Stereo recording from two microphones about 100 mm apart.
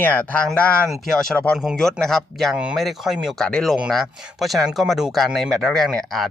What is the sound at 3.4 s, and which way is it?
Speech, 10° left (ahead or behind).